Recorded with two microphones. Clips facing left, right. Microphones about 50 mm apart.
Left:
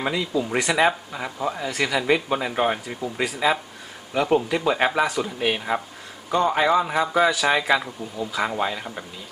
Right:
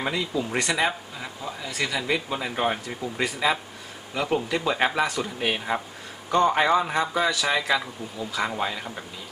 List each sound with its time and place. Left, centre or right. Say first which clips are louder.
0.0 s speech: left 3 dB; centre
1.1 s speech: left 7 dB; left
1.7 s speech: left 2 dB; centre
2.0 s a man's voice: left 5 dB; left; by 9.0 s centre